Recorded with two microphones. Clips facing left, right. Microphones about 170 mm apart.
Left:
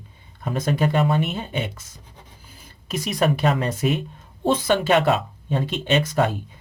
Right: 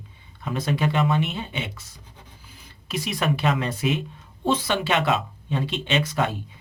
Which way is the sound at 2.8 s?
45° left (ahead or behind).